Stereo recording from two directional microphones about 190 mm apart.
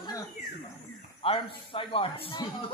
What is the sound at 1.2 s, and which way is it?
Speech, 30° left (ahead or behind).